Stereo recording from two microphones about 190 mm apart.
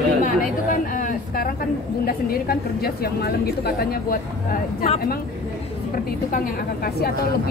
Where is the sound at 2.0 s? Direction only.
55° left (ahead or behind).